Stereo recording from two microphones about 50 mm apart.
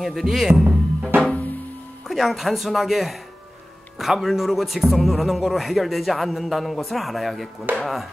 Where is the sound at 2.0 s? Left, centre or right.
Centre.